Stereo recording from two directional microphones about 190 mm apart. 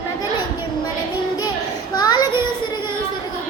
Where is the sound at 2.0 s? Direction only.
20° left (ahead or behind).